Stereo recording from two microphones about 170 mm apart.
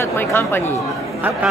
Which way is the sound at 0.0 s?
15° left (ahead or behind).